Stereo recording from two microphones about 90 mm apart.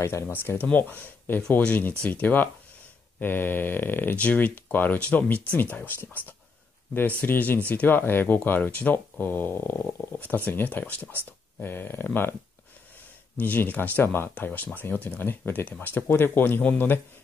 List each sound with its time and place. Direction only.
0.0 s speech: 25° left (ahead or behind)
7.2 s speech: 20° left (ahead or behind)
13.4 s speech: 20° left (ahead or behind)